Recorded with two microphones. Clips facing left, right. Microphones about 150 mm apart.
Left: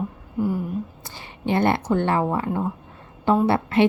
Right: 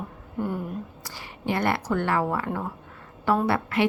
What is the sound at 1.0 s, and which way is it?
A woman's voice, 25° left (ahead or behind).